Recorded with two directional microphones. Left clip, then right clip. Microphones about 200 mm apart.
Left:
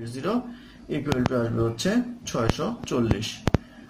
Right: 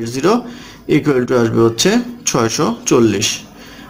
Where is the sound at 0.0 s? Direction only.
40° right (ahead or behind).